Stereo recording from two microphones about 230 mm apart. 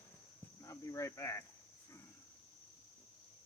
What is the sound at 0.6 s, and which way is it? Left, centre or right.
Speech, centre.